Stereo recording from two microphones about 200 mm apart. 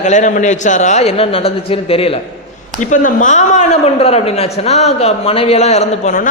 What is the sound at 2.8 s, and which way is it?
A man's voice, 40° left (ahead or behind).